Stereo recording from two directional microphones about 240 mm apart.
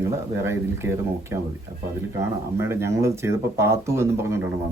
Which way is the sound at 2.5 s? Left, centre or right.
Centre.